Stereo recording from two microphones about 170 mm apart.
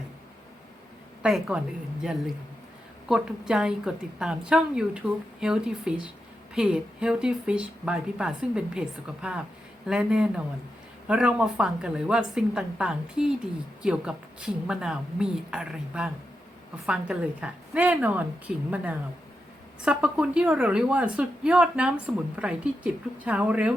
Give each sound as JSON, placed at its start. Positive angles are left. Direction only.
{"t": 1.2, "sound": "a woman's voice", "side_deg": -5}